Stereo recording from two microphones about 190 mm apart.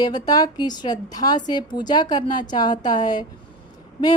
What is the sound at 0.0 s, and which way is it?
A woman's voice, 20° left (ahead or behind).